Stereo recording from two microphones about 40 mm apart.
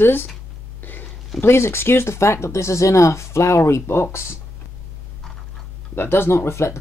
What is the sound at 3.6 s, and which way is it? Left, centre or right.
Speech, left.